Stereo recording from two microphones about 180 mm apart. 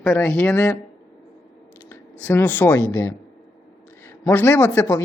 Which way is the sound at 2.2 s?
10° left (ahead or behind).